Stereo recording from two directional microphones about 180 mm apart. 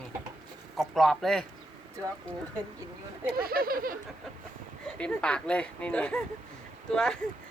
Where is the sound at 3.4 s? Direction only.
55° right (ahead or behind).